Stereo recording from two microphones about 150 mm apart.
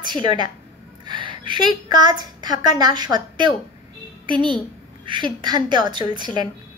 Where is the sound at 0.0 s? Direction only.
30° right (ahead or behind).